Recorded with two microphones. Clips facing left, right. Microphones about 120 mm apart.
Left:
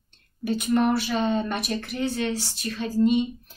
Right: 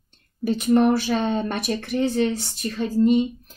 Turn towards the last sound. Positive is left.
turn(degrees=-40)  # may be behind; listen again after turning